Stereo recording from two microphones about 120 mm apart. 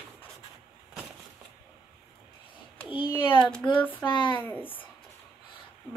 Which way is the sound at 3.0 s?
45° left (ahead or behind).